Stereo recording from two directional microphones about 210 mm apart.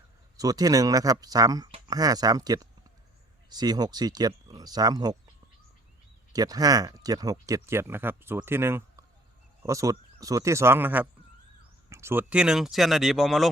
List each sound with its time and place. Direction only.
0.3 s speech: 15° right (ahead or behind)
6.3 s speech: 15° right (ahead or behind); by 13.5 s centre (ahead or behind)